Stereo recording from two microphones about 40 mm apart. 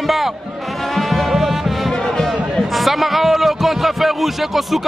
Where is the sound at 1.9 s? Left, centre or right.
Centre.